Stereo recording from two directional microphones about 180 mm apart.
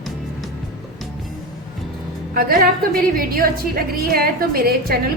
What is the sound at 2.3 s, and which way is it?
A woman's voice, 55° right (ahead or behind).